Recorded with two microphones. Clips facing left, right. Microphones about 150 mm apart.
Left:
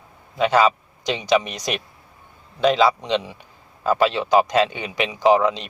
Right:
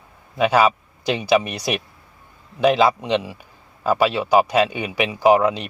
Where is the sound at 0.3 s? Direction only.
10° right (ahead or behind).